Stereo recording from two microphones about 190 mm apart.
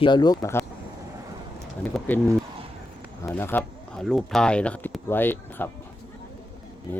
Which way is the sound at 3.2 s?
10° left (ahead or behind).